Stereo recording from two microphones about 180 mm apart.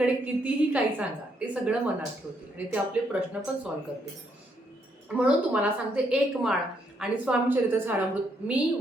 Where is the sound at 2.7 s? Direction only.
5° right (ahead or behind).